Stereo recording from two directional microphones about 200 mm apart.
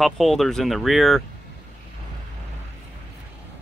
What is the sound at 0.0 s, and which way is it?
Speech, centre (ahead or behind).